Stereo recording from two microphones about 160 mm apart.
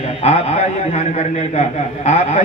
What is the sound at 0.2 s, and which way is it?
A man's voice, 40° left (ahead or behind).